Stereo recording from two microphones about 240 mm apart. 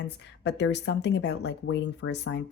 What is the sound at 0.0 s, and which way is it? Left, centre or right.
Speech, left.